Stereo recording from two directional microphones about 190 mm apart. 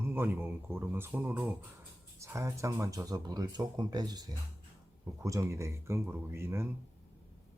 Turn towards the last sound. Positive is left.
turn(degrees=-15)  # may be behind; listen again after turning